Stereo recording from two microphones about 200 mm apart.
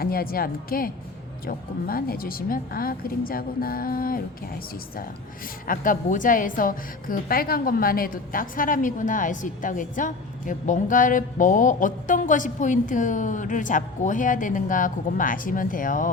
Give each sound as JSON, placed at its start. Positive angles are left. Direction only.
{"t": 0.0, "sound": "speech", "side_deg": 50}
{"t": 5.6, "sound": "a woman's voice", "side_deg": 45}